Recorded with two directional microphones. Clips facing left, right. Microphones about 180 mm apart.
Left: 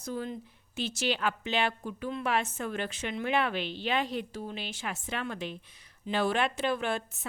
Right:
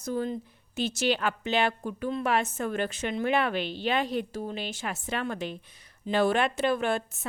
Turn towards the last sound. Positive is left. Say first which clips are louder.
# right 4 dB
turn(degrees=-45)  # may be behind; listen again after turning